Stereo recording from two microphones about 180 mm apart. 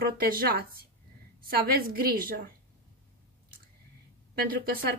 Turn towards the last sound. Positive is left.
turn(degrees=-55)  # may be behind; listen again after turning